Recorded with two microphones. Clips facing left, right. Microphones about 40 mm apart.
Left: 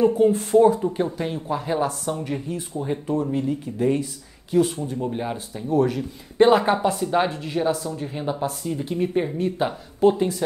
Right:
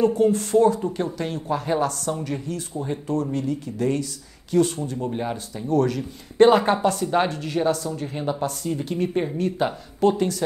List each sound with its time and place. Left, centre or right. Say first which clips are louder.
0.0 s speech: left 1 dB; centre